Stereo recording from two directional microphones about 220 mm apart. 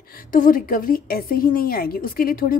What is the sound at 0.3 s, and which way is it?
A woman's voice, 40° left (ahead or behind).